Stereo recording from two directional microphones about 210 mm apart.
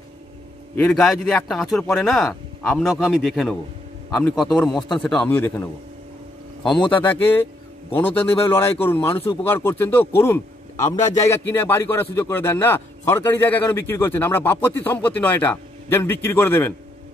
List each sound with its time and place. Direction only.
0.7 s speech: centre (ahead or behind)
8.5 s speech: 10° left (ahead or behind)
9.1 s speech: 25° left (ahead or behind)
9.4 s speech: 10° left (ahead or behind)